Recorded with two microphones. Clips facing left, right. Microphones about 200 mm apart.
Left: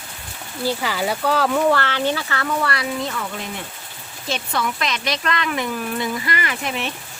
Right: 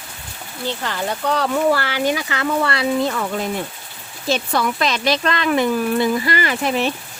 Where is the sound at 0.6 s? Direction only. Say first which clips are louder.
Left 2 dB; 10° left (ahead or behind); by 2.8 s 25° right (ahead or behind).